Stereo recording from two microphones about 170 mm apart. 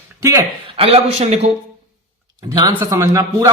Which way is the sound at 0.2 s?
20° right (ahead or behind).